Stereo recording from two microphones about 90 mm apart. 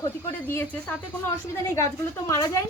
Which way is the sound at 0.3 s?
20° left (ahead or behind).